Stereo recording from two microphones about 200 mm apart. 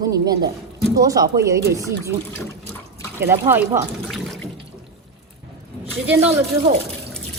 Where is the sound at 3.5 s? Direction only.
10° right (ahead or behind).